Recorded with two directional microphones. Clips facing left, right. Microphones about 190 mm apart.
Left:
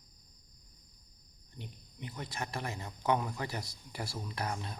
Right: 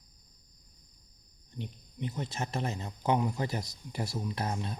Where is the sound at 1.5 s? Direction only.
20° right (ahead or behind).